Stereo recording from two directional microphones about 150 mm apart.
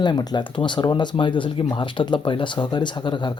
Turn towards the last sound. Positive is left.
turn(degrees=30)  # may be behind; listen again after turning